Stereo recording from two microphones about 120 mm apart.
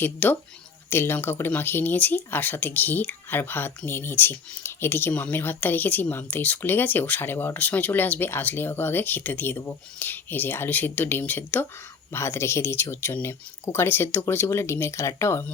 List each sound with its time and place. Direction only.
0.0 s speech: 15° left (ahead or behind)